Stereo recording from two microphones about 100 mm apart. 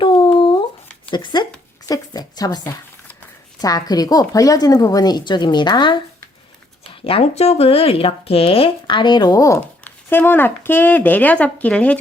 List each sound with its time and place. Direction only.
0.0 s humming: 60° left (ahead or behind)
1.1 s a woman's voice: 50° left (ahead or behind)
3.6 s a woman's voice: 40° left (ahead or behind)
7.0 s speech: 80° left; by 9.6 s 40° left (ahead or behind)
9.6 s speech: 20° left (ahead or behind)